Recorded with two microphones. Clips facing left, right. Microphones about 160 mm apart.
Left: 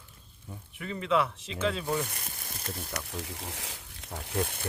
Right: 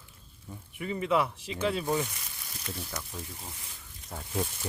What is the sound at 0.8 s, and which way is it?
Speech, 15° right (ahead or behind).